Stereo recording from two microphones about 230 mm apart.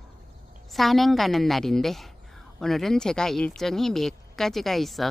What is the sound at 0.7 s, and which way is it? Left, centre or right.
Speech, centre.